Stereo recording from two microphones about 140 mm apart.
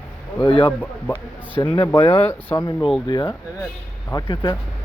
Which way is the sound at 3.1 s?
30° left (ahead or behind).